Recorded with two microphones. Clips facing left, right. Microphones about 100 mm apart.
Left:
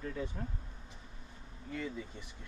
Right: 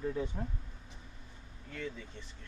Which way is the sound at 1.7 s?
10° left (ahead or behind).